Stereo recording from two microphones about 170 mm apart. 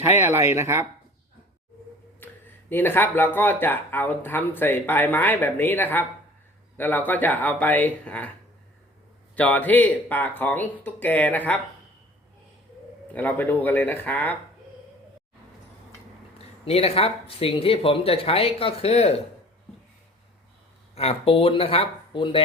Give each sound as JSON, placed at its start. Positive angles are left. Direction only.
{"t": 0.0, "sound": "speech", "side_deg": -15}
{"t": 2.2, "sound": "speech", "side_deg": 10}
{"t": 9.3, "sound": "speech", "side_deg": 10}
{"t": 13.1, "sound": "speech", "side_deg": 10}
{"t": 16.6, "sound": "speech", "side_deg": 35}
{"t": 20.9, "sound": "speech", "side_deg": 35}